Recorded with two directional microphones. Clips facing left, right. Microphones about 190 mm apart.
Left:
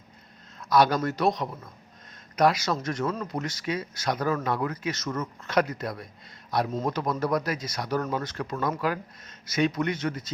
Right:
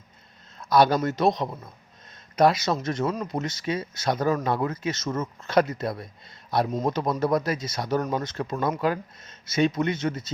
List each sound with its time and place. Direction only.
0.6 s speech: 30° right (ahead or behind)